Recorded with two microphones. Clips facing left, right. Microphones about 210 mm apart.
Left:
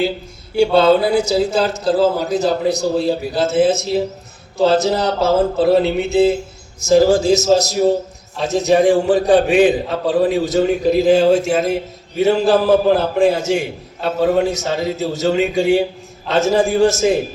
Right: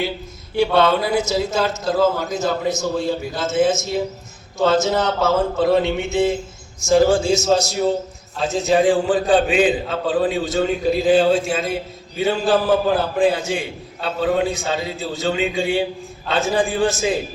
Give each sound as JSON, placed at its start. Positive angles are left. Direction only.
{"t": 0.6, "sound": "a man's voice", "side_deg": 30}